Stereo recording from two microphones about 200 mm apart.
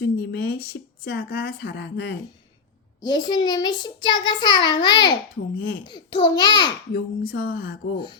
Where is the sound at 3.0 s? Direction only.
20° left (ahead or behind).